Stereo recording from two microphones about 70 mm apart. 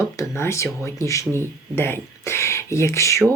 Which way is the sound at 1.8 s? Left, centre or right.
Left.